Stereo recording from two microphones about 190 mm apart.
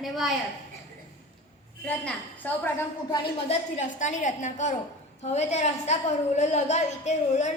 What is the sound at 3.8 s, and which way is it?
A woman's voice, 40° left (ahead or behind).